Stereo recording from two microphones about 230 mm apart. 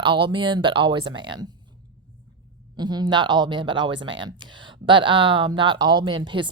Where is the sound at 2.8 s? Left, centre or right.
Centre.